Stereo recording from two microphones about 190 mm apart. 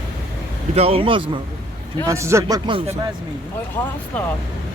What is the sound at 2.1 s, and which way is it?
Speech, 15° right (ahead or behind).